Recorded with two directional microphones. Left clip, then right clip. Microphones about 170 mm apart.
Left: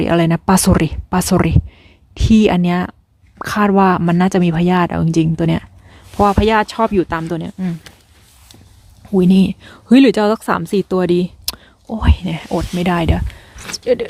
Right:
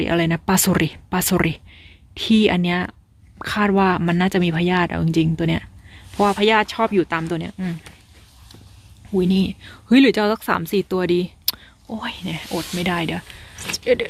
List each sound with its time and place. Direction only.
0.0 s speech: 30° left (ahead or behind)
9.1 s speech: 35° left (ahead or behind)
13.6 s a sound: centre (ahead or behind)
13.8 s speech: 25° left (ahead or behind)